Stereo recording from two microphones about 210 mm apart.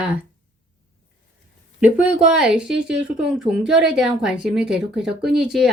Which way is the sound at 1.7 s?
5° right (ahead or behind).